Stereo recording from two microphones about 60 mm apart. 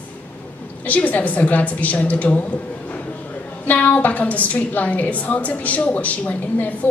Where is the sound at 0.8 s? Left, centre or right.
Left.